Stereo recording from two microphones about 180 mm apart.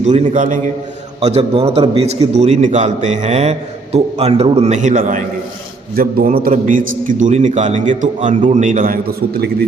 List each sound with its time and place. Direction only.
0.0 s a man's voice: 35° right (ahead or behind); by 9.6 s 60° right (ahead or behind)